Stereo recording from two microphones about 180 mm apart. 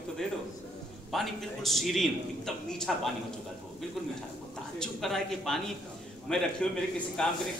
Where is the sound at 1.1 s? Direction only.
Centre (ahead or behind).